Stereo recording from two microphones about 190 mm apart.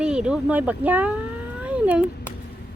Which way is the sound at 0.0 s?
5° right (ahead or behind).